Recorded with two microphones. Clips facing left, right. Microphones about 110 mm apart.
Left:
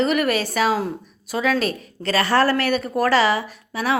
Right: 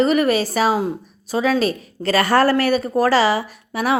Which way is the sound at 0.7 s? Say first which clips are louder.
Right 3 dB; 15° right (ahead or behind).